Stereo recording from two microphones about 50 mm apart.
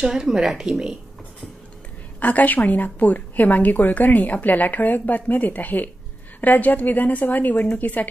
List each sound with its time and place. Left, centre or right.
0.0 s speech: centre
2.1 s a woman's voice: left